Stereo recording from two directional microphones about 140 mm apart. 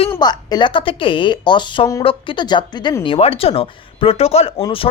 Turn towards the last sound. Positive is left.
turn(degrees=40)  # may be behind; listen again after turning